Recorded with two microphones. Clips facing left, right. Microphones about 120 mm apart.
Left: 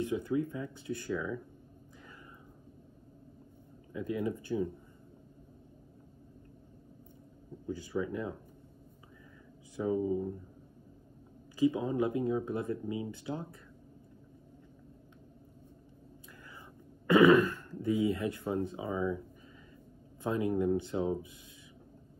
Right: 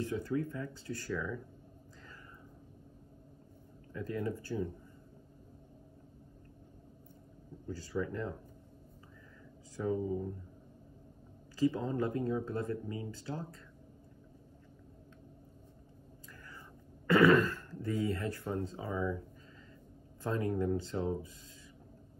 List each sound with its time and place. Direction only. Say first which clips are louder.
0.0 s speech: left 3 dB; 15° left (ahead or behind)
3.9 s speech: left 3 dB; 15° left (ahead or behind)
7.6 s speech: left 2 dB; 15° left (ahead or behind)
9.8 s speech: left 3 dB; 10° left (ahead or behind)
11.5 s speech: left 3 dB; 15° left (ahead or behind)
17.1 s throat clearing: left 3 dB; 15° left (ahead or behind)
17.5 s speech: left 5 dB; 15° left (ahead or behind)
20.2 s speech: left 3 dB; 20° left (ahead or behind)